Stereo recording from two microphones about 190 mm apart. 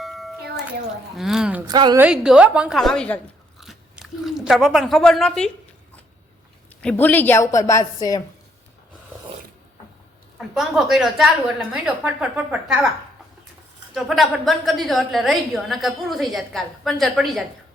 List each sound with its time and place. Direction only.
0.0 s a sound: centre (ahead or behind)
1.1 s a woman's voice: centre (ahead or behind)
1.6 s a woman's voice: 20° right (ahead or behind)
2.0 s a woman's voice: 5° right (ahead or behind)
6.8 s a woman's voice: 10° left (ahead or behind)
10.3 s a woman's voice: centre (ahead or behind)
13.9 s a woman's voice: centre (ahead or behind)